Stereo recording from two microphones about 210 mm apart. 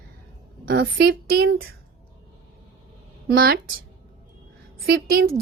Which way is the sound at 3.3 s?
45° right (ahead or behind).